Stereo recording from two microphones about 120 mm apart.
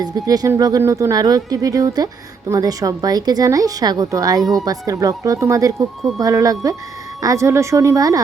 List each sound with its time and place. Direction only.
0.0 s a woman's voice: 30° right (ahead or behind)